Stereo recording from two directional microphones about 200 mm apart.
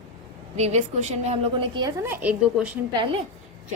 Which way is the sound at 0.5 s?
35° right (ahead or behind).